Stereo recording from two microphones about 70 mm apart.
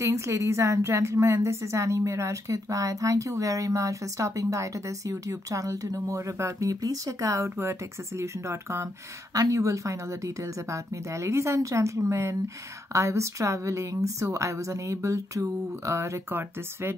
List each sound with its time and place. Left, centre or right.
0.0 s a woman's voice: right
6.7 s a woman's voice: right